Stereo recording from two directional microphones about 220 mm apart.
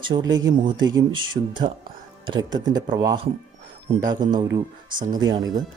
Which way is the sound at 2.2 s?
20° right (ahead or behind).